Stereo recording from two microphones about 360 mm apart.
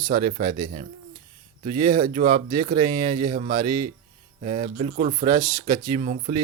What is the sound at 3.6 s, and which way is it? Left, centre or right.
Speech, right.